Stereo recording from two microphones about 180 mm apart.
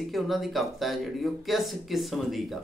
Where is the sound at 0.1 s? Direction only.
Centre (ahead or behind).